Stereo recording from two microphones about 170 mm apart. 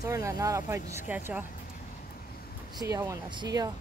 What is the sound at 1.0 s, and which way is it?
Speech, 10° right (ahead or behind).